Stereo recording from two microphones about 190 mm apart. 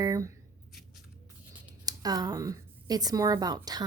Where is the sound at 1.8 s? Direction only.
20° right (ahead or behind).